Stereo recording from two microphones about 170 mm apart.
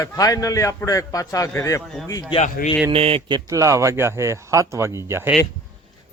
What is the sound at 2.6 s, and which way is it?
Speech, 60° left (ahead or behind).